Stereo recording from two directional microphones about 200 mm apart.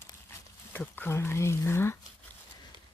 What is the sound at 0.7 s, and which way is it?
Speech, 10° left (ahead or behind).